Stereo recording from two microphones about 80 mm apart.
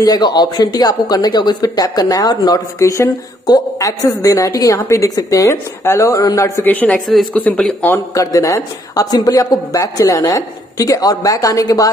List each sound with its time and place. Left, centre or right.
0.0 s speech: left
6.6 s a man's voice: left
8.1 s speech: left